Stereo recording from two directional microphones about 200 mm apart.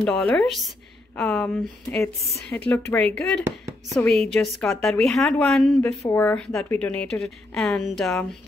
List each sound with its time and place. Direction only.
0.0 s a woman's voice: 10° left (ahead or behind)